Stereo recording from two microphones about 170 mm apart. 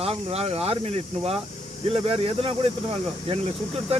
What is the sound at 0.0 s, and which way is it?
Speech, 35° right (ahead or behind).